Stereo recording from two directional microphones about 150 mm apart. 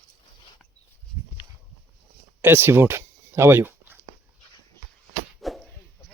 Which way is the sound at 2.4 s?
15° right (ahead or behind).